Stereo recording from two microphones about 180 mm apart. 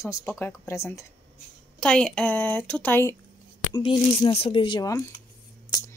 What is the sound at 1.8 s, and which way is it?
Speech, 5° left (ahead or behind).